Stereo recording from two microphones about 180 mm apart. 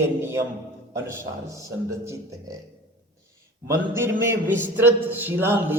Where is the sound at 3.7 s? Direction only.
15° right (ahead or behind).